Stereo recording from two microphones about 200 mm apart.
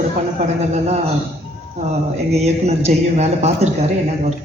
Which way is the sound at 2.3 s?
30° right (ahead or behind).